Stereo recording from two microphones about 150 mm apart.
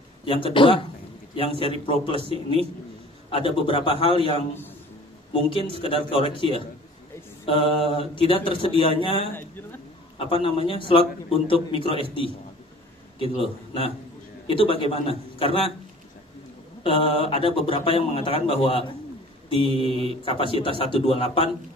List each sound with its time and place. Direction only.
0.2 s speech: 35° left (ahead or behind)
9.3 s a sound: 15° left (ahead or behind)
10.3 s speech: 40° left (ahead or behind)
16.8 s speech: 35° left (ahead or behind)